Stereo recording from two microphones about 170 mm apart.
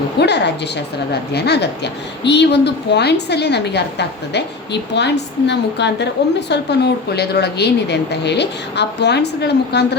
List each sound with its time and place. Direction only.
0.2 s a woman's voice: 85° left
1.1 s speech: 75° left (ahead or behind); by 6.1 s 90° left
6.5 s speech: 75° left (ahead or behind)